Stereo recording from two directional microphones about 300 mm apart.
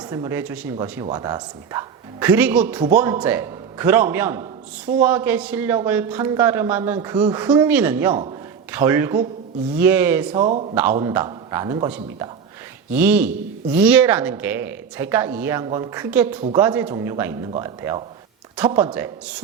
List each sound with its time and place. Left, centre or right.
0.1 s speech: centre
10.4 s speech: right
11.0 s speech: centre